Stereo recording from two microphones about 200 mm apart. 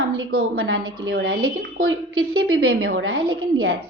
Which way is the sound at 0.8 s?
25° right (ahead or behind).